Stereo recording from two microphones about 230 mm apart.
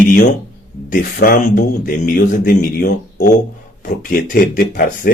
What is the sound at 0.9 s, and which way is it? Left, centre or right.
A man's voice, left.